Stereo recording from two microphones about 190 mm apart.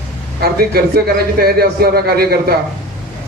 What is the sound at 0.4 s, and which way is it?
A man's voice, 55° right (ahead or behind).